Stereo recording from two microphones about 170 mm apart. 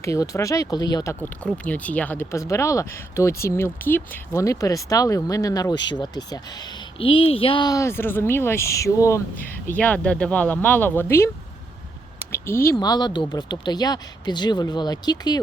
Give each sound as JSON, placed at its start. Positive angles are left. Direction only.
{"t": 0.0, "sound": "speech", "side_deg": 15}
{"t": 1.5, "sound": "speech", "side_deg": 10}
{"t": 12.3, "sound": "speech", "side_deg": 15}